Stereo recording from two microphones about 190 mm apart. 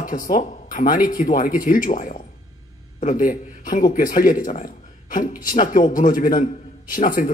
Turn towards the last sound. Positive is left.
turn(degrees=45)  # may be behind; listen again after turning